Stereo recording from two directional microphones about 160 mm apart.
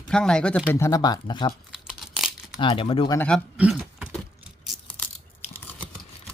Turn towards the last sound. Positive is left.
turn(degrees=10)  # may be behind; listen again after turning